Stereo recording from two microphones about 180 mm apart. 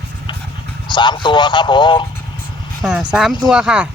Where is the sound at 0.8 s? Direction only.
25° left (ahead or behind).